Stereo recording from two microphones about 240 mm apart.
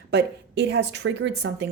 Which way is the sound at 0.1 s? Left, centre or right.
Right.